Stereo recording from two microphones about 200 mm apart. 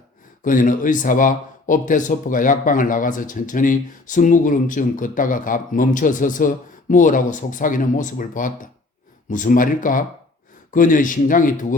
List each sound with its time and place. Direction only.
0.4 s speech: 40° left (ahead or behind)